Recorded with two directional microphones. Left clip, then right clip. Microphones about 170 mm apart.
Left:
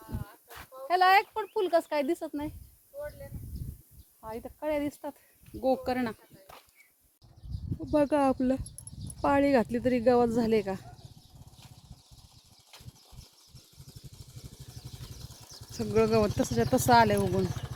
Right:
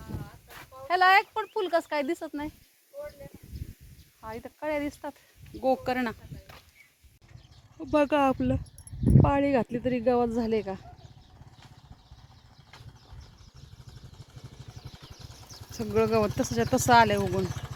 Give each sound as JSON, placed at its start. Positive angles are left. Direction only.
{"t": 0.4, "sound": "a sound", "side_deg": -15}
{"t": 0.9, "sound": "speech", "side_deg": 10}
{"t": 4.3, "sound": "speech", "side_deg": 10}
{"t": 5.6, "sound": "speech", "side_deg": 0}
{"t": 7.8, "sound": "speech", "side_deg": 5}
{"t": 14.3, "sound": "vehicle", "side_deg": -40}
{"t": 15.8, "sound": "speech", "side_deg": 5}
{"t": 17.4, "sound": "speech", "side_deg": -35}